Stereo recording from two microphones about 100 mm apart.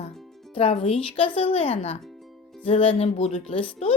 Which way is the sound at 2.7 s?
70° left (ahead or behind).